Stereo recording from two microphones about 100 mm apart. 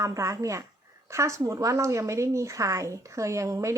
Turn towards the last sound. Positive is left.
turn(degrees=-30)  # may be behind; listen again after turning